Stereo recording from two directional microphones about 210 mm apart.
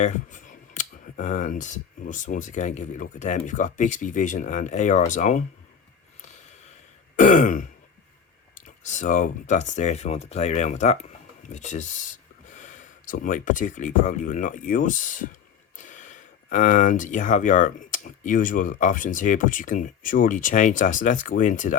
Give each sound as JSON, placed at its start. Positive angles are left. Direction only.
{"t": 0.0, "sound": "speech", "side_deg": 40}
{"t": 7.2, "sound": "speech", "side_deg": 40}